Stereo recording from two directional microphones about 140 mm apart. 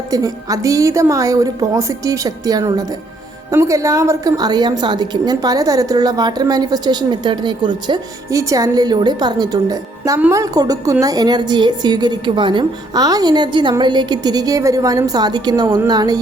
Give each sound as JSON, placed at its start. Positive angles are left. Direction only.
{"t": 0.1, "sound": "a woman's voice", "side_deg": -25}